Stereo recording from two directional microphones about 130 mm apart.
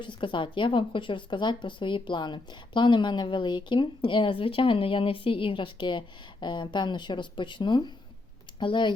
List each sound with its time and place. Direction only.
0.0 s speech: 40° left (ahead or behind)